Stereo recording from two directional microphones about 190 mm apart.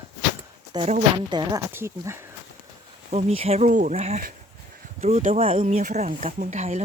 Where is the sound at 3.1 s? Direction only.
35° right (ahead or behind).